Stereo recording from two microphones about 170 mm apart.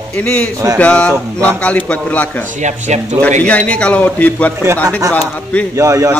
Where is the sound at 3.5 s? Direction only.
5° left (ahead or behind).